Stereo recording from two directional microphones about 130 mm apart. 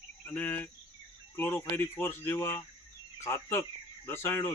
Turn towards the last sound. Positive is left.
turn(degrees=20)  # may be behind; listen again after turning